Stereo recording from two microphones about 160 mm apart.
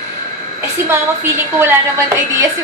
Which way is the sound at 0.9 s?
15° right (ahead or behind).